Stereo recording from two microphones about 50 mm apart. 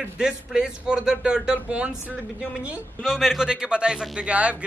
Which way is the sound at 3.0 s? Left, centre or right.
Centre.